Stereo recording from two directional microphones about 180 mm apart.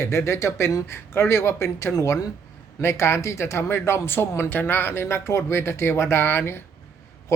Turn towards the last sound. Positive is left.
turn(degrees=15)  # may be behind; listen again after turning